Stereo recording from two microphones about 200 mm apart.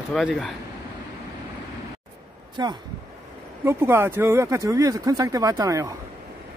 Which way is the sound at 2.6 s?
20° right (ahead or behind).